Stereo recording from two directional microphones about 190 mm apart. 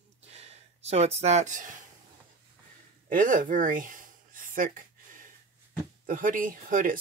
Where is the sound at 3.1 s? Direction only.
45° right (ahead or behind).